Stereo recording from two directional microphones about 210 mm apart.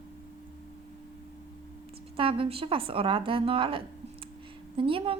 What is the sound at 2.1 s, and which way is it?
A woman's voice, 25° right (ahead or behind).